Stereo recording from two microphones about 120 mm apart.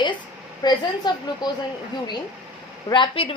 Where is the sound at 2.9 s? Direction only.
45° left (ahead or behind).